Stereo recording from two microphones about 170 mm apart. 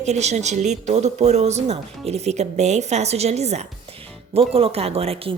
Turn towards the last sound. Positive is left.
turn(degrees=-35)  # may be behind; listen again after turning